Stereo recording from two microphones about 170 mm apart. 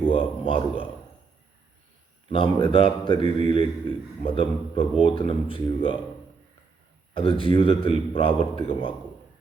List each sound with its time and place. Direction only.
0.0 s a man's voice: 30° left (ahead or behind)
2.3 s a man's voice: 30° left (ahead or behind)
7.1 s a man's voice: 30° left (ahead or behind)